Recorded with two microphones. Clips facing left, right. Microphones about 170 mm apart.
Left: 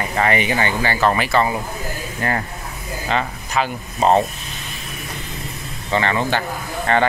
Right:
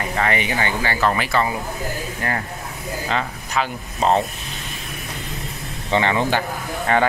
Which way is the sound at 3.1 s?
5° left (ahead or behind).